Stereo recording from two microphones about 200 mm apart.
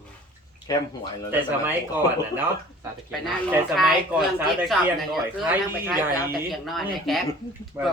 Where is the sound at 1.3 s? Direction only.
10° right (ahead or behind).